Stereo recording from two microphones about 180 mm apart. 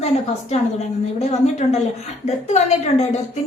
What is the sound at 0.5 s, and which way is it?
A woman's voice, 40° left (ahead or behind).